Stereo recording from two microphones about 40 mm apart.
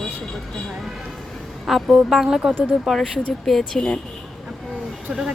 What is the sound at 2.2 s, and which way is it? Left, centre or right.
Speech, centre.